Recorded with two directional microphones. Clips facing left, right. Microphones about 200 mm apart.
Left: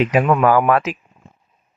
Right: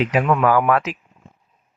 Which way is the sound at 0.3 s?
30° left (ahead or behind).